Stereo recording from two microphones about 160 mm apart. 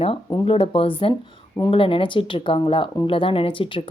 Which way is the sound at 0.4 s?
35° left (ahead or behind).